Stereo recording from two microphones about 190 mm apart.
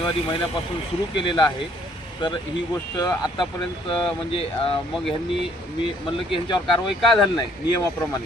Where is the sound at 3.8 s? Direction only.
25° left (ahead or behind).